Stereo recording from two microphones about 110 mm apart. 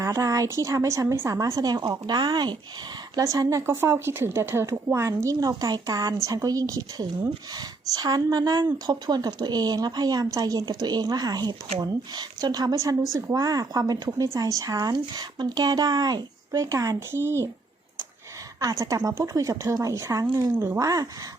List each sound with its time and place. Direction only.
0.0 s speech: 25° right (ahead or behind)
3.7 s speech: 20° right (ahead or behind)
18.6 s speech: 30° right (ahead or behind)